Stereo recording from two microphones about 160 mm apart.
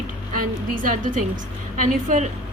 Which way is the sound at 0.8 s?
55° right (ahead or behind).